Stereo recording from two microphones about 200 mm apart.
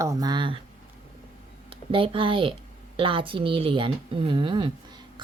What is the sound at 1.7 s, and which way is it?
Speech, 25° right (ahead or behind).